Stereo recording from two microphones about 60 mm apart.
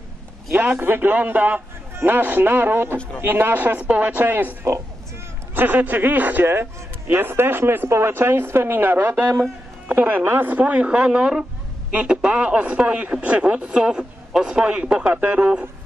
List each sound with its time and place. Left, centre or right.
0.7 s a man's voice: right; by 15.6 s centre